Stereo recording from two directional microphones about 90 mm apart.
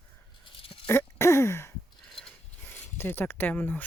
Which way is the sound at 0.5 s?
85° left.